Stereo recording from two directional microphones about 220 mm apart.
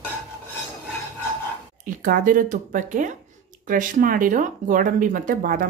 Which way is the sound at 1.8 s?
40° right (ahead or behind).